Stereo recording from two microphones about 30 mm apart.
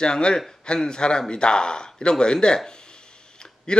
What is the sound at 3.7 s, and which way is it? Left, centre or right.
Speech, left.